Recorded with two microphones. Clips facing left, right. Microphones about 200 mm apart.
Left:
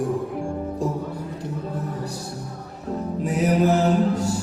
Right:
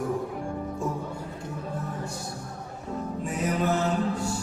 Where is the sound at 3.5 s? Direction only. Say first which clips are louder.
Left 7 dB; 35° left (ahead or behind).